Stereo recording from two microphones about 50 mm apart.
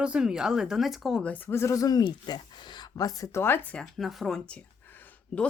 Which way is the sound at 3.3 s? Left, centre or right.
Left.